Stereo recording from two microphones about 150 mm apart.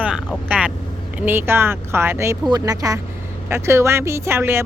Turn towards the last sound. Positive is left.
turn(degrees=-15)  # may be behind; listen again after turning